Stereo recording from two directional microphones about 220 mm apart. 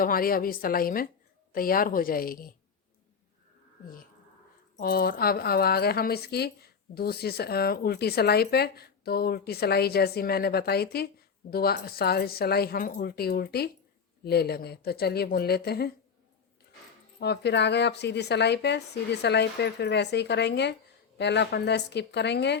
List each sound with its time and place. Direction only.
0.0 s a woman's voice: 40° left (ahead or behind)
4.8 s a woman's voice: 40° left (ahead or behind)
17.2 s a woman's voice: 50° left (ahead or behind)